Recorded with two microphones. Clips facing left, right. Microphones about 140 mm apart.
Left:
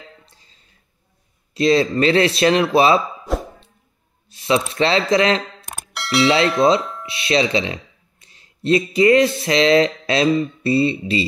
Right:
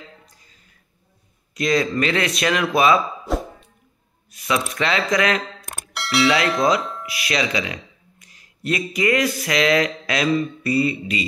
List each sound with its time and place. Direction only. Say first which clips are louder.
0.2 s a sound: even; 30° left (ahead or behind)
1.5 s speech: left 4 dB; 30° left (ahead or behind)
3.3 s plop: left 1 dB; centre (ahead or behind)
4.3 s mechanisms: left 5 dB; 25° left (ahead or behind)
4.6 s speech: left 4 dB; 30° left (ahead or behind)
5.7 s music: left 3 dB; centre (ahead or behind)
6.2 s speech: left 3 dB; 30° left (ahead or behind)